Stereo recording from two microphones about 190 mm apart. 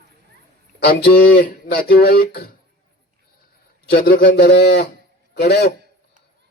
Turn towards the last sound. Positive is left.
turn(degrees=60)  # may be behind; listen again after turning